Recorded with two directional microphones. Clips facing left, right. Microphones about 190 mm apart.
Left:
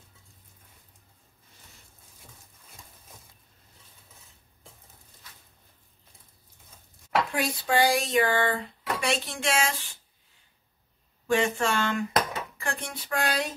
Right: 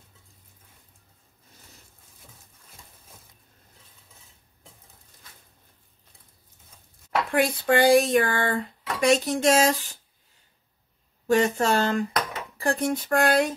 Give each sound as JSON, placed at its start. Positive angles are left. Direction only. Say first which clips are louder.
{"t": 7.3, "sound": "speech", "louder": "right 7 dB", "side_deg": -55}
{"t": 11.2, "sound": "speech", "louder": "right 4 dB", "side_deg": -40}